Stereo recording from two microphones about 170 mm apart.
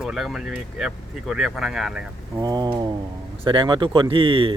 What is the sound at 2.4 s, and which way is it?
Speech, 25° right (ahead or behind).